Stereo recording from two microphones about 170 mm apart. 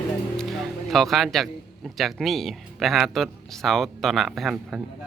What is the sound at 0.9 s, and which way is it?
Speech, centre (ahead or behind).